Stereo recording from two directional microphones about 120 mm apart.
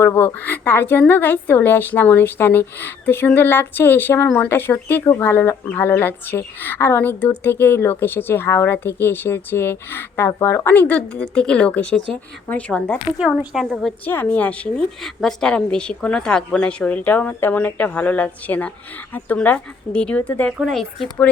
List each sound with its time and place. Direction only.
0.0 s speech: 20° left (ahead or behind)
13.1 s speech: centre (ahead or behind)
14.0 s speech: 15° left (ahead or behind)
20.6 s speech: centre (ahead or behind)